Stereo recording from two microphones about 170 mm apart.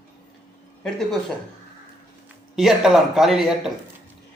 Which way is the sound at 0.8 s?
Centre (ahead or behind).